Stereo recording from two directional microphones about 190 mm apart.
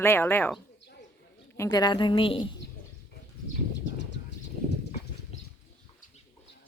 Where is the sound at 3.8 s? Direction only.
70° left (ahead or behind).